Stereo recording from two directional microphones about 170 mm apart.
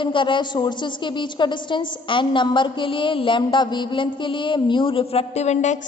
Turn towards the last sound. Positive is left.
turn(degrees=40)  # may be behind; listen again after turning